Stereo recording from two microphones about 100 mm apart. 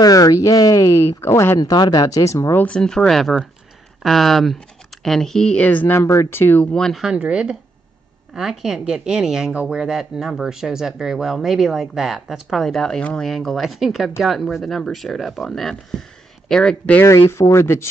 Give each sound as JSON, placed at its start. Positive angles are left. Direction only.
{"t": 0.0, "sound": "speech", "side_deg": 35}
{"t": 1.6, "sound": "speech", "side_deg": 40}
{"t": 2.6, "sound": "speech", "side_deg": 10}
{"t": 5.9, "sound": "speech", "side_deg": 30}
{"t": 6.6, "sound": "speech", "side_deg": 5}
{"t": 7.2, "sound": "speech", "side_deg": -10}
{"t": 17.0, "sound": "speech", "side_deg": 30}